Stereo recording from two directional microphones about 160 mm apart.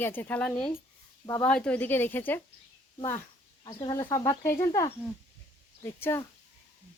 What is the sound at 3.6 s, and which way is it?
Speech, 25° left (ahead or behind).